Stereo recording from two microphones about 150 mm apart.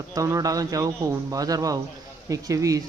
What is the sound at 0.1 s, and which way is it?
Speech, 25° right (ahead or behind).